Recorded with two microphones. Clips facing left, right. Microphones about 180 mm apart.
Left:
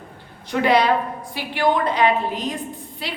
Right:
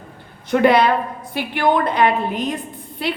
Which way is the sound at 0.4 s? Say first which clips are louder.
Right 3 dB; 55° right (ahead or behind).